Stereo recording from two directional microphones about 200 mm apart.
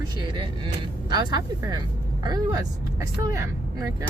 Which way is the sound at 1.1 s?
20° right (ahead or behind).